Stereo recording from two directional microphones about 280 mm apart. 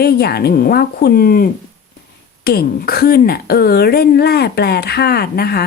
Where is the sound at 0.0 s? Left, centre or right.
Left.